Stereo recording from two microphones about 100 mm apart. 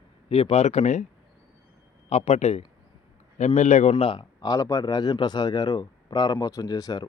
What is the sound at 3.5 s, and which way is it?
Speech, 65° left (ahead or behind).